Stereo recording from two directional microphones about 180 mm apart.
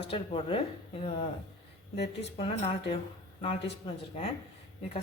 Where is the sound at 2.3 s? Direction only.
30° left (ahead or behind).